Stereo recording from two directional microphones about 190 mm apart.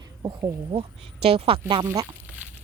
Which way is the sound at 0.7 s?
30° right (ahead or behind).